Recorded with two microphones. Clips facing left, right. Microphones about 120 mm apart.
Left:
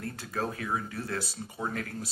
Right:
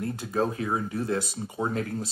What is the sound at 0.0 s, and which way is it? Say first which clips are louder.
Speech: right 6 dB; 20° right (ahead or behind).